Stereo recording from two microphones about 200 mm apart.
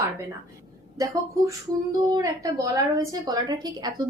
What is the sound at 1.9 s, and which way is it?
A woman's voice, 15° right (ahead or behind).